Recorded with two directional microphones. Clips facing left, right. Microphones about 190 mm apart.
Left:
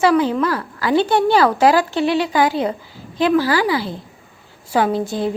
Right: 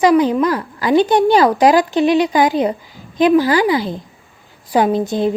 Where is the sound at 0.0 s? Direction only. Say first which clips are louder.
Right 3 dB; 15° right (ahead or behind).